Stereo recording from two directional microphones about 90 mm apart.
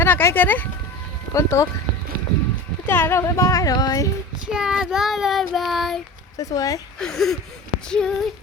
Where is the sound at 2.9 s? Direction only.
25° left (ahead or behind); by 4.1 s 45° left (ahead or behind).